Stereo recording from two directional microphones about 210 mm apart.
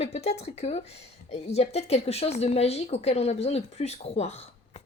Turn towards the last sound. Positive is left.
turn(degrees=30)  # may be behind; listen again after turning